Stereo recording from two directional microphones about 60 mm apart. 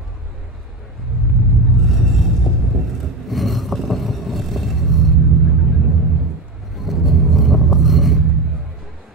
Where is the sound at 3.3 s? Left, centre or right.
Centre.